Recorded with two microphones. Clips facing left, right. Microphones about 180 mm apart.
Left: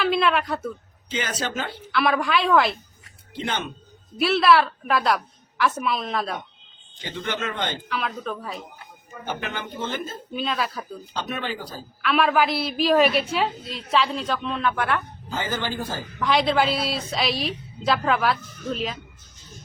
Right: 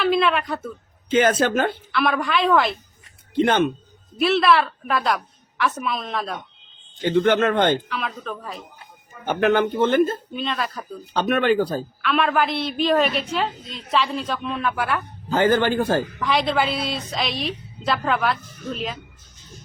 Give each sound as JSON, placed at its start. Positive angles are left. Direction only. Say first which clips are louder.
{"t": 0.0, "sound": "a sound", "louder": "right 2 dB", "side_deg": 0}
{"t": 1.1, "sound": "speech", "louder": "right 10 dB", "side_deg": -55}
{"t": 1.9, "sound": "a woman's voice", "louder": "even", "side_deg": 0}
{"t": 3.3, "sound": "speech", "louder": "right 11 dB", "side_deg": -55}
{"t": 4.2, "sound": "a woman's voice", "louder": "even", "side_deg": 0}
{"t": 7.0, "sound": "speech", "louder": "right 12 dB", "side_deg": -55}
{"t": 7.9, "sound": "a woman's voice", "louder": "left 1 dB", "side_deg": 0}
{"t": 9.2, "sound": "speech", "louder": "right 12 dB", "side_deg": -60}
{"t": 10.3, "sound": "a woman's voice", "louder": "even", "side_deg": 0}
{"t": 11.1, "sound": "speech", "louder": "right 11 dB", "side_deg": -60}
{"t": 12.0, "sound": "a woman's voice", "louder": "left 1 dB", "side_deg": 0}
{"t": 15.3, "sound": "speech", "louder": "right 10 dB", "side_deg": -60}
{"t": 16.2, "sound": "a woman's voice", "louder": "left 6 dB", "side_deg": 0}